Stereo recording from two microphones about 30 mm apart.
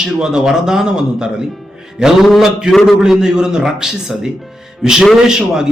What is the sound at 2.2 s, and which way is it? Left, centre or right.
A man's voice, centre.